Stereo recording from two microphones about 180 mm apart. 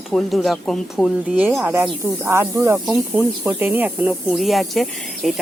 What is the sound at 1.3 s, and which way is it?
A woman's voice, 10° right (ahead or behind).